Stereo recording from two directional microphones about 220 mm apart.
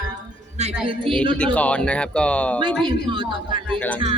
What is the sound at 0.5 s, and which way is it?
Speech, 25° right (ahead or behind).